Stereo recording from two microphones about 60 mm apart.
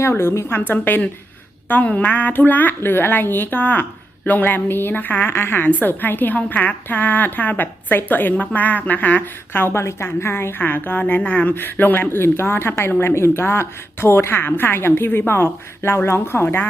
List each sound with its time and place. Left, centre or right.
0.0 s a woman's voice: left